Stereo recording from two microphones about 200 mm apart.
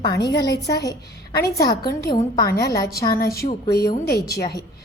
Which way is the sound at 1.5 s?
15° left (ahead or behind).